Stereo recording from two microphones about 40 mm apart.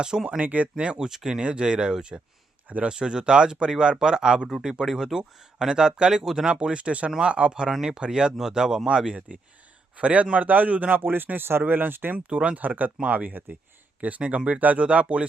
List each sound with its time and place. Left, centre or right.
0.4 s speech: right
0.9 s speech: right
2.6 s speech: right
3.0 s speech: right
6.5 s speech: right
10.0 s speech: right
10.3 s speech: right
12.1 s speech: right
12.5 s speech: right
14.8 s speech: right